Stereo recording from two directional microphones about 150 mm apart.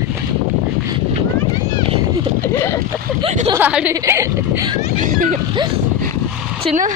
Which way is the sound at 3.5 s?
10° right (ahead or behind).